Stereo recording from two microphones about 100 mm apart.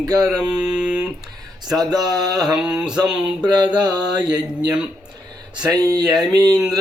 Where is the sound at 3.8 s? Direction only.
40° right (ahead or behind).